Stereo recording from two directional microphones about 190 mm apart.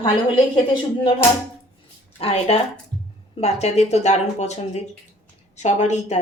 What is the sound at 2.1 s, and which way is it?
Speech, 30° left (ahead or behind).